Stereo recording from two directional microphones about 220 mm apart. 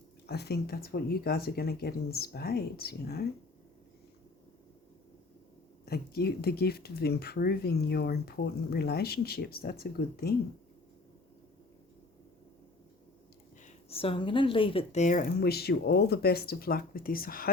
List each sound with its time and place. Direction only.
0.3 s speech: 50° left (ahead or behind)
5.8 s speech: 45° left (ahead or behind)
13.7 s a woman's voice: 25° left (ahead or behind); by 17.5 s 40° left (ahead or behind)